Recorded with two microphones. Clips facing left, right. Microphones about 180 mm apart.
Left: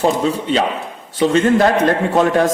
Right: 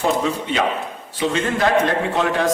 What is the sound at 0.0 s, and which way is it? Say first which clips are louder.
Speech: left 4 dB; 35° left (ahead or behind).